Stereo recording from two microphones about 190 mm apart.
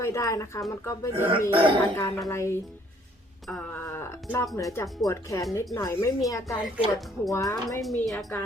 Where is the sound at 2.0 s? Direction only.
15° left (ahead or behind).